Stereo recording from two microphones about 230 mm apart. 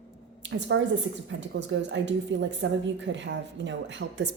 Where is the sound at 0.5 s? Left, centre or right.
Right.